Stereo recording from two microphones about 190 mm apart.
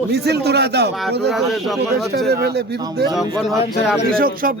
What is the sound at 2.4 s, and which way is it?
Speech, 60° right (ahead or behind).